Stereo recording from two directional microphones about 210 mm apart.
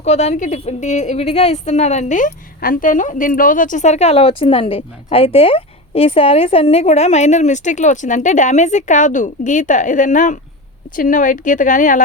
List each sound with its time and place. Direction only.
0.0 s a woman's voice: 30° left (ahead or behind)